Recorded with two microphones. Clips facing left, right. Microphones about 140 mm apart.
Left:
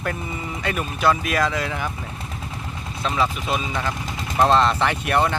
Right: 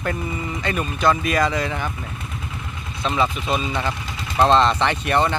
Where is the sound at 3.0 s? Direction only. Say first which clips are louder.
Right 2 dB; centre (ahead or behind).